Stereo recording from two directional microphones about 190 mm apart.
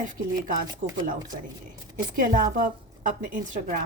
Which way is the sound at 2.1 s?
45° right (ahead or behind).